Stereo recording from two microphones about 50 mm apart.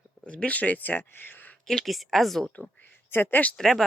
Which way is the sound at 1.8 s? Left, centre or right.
Centre.